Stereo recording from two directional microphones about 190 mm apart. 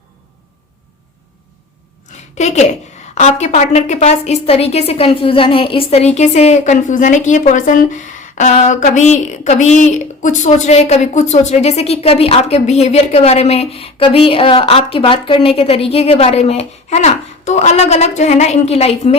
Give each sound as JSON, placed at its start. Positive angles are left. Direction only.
{"t": 2.4, "sound": "a woman's voice", "side_deg": 35}